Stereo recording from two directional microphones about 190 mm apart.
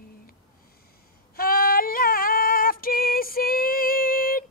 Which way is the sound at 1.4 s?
50° left (ahead or behind).